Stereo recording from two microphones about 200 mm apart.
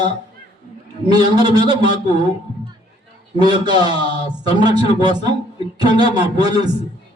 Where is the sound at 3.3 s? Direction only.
20° right (ahead or behind).